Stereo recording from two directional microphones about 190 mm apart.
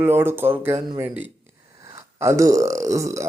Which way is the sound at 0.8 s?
25° right (ahead or behind).